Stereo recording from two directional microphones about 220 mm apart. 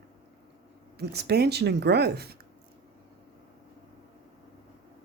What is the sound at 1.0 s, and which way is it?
Speech, 45° right (ahead or behind).